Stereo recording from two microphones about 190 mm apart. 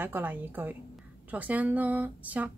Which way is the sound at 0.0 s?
10° right (ahead or behind).